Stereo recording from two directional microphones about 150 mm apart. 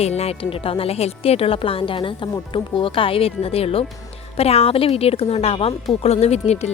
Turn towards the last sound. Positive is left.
turn(degrees=45)  # may be behind; listen again after turning